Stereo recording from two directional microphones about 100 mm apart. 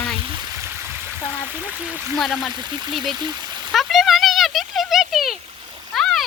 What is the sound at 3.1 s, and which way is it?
Speech, 45° right (ahead or behind).